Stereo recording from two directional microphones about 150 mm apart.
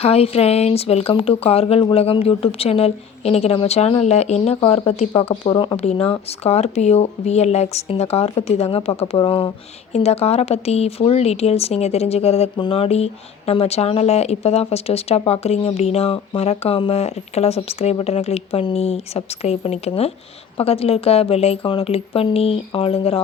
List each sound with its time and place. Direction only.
0.0 s a woman's voice: 40° left (ahead or behind)